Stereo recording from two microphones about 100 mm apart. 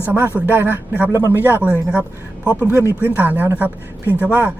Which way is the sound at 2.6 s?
25° right (ahead or behind).